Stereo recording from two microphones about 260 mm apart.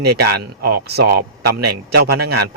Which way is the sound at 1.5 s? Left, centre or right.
Right.